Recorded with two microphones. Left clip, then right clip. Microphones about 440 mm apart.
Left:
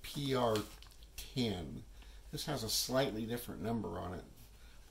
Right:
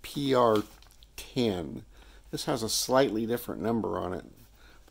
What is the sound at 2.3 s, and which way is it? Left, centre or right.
Speech, centre.